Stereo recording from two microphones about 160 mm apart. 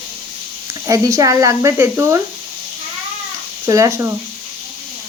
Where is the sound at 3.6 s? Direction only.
20° right (ahead or behind).